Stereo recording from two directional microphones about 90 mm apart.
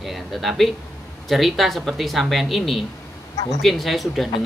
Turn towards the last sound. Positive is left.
turn(degrees=0)  # may be behind; listen again after turning